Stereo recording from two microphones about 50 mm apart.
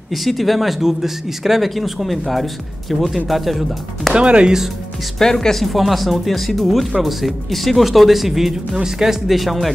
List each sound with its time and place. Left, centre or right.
0.1 s speech: centre
4.1 s speech: right
5.2 s speech: centre